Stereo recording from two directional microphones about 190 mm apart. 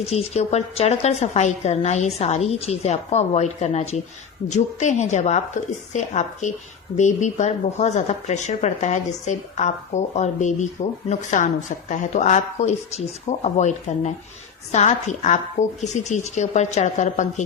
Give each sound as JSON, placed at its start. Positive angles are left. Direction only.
{"t": 0.0, "sound": "a woman's voice", "side_deg": 30}